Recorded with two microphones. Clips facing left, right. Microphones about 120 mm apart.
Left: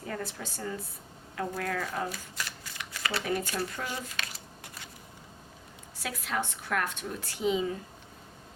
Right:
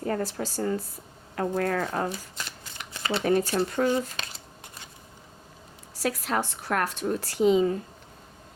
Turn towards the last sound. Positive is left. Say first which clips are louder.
# right 8 dB
turn(degrees=-40)  # may be behind; listen again after turning